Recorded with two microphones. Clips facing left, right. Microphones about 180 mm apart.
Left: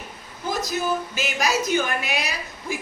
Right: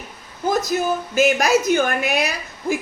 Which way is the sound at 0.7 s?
50° right (ahead or behind).